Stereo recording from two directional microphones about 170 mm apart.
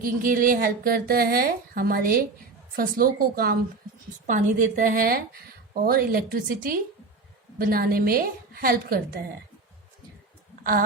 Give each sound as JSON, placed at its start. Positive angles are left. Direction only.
{"t": 0.0, "sound": "a woman's voice", "side_deg": -55}
{"t": 4.3, "sound": "a woman's voice", "side_deg": -45}
{"t": 10.6, "sound": "speech", "side_deg": -55}